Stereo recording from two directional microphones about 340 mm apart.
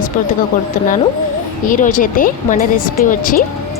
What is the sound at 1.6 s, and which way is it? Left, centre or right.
A woman's voice, left.